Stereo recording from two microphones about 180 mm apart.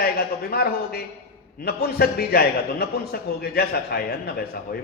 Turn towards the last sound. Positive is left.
turn(degrees=60)  # may be behind; listen again after turning